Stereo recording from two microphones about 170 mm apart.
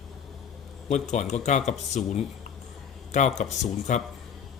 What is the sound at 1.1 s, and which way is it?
Speech, 45° left (ahead or behind).